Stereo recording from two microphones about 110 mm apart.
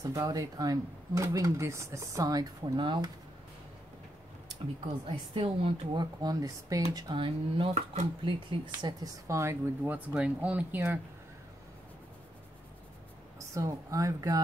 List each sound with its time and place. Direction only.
0.0 s speech: 35° right (ahead or behind)
5.0 s a woman's voice: 55° right (ahead or behind)
6.2 s speech: 35° right (ahead or behind)
7.2 s speech: 50° right (ahead or behind)
9.0 s speech: 25° right (ahead or behind)
13.5 s speech: 30° right (ahead or behind)